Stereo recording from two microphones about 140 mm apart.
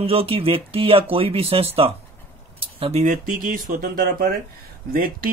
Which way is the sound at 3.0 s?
65° right (ahead or behind).